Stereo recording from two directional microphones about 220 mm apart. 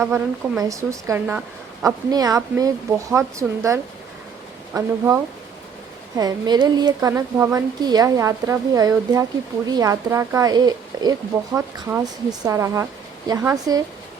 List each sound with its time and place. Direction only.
0.0 s a woman's voice: 10° right (ahead or behind)